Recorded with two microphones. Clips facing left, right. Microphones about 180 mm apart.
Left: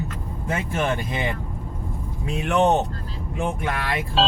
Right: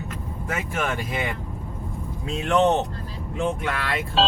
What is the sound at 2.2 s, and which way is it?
Speech, 10° left (ahead or behind).